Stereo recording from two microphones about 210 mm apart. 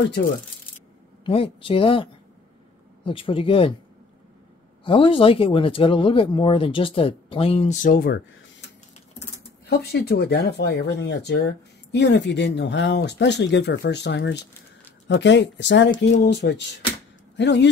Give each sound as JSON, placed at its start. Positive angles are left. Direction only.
{"t": 1.2, "sound": "speech", "side_deg": 25}
{"t": 3.1, "sound": "speech", "side_deg": 25}
{"t": 4.8, "sound": "speech", "side_deg": 25}
{"t": 9.7, "sound": "speech", "side_deg": 50}